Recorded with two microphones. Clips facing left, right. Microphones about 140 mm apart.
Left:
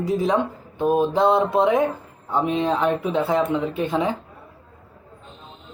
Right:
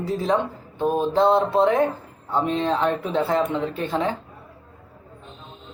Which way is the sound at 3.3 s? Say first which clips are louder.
Left 1 dB; 15° left (ahead or behind).